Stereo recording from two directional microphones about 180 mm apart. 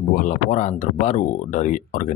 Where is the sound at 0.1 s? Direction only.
45° left (ahead or behind).